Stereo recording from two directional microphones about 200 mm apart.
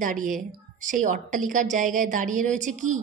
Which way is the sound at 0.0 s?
40° right (ahead or behind).